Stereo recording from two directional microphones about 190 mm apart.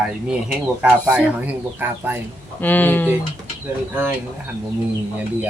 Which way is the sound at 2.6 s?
10° left (ahead or behind).